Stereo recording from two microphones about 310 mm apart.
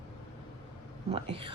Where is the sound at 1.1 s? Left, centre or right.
Centre.